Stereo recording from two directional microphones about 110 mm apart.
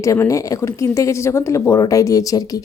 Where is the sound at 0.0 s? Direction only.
30° left (ahead or behind).